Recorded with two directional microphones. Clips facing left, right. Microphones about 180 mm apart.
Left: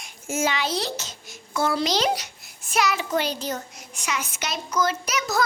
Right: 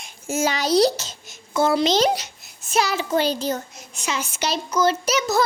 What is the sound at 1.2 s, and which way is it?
A child's voice, 20° right (ahead or behind).